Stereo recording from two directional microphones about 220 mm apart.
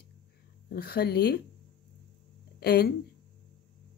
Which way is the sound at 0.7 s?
45° left (ahead or behind).